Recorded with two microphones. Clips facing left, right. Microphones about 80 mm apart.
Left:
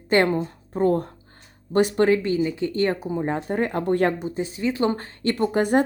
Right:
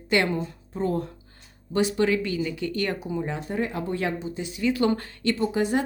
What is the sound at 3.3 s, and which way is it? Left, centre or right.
Speech, left.